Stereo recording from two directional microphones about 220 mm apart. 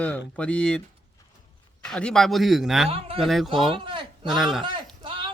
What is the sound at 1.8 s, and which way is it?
Speech, 5° left (ahead or behind).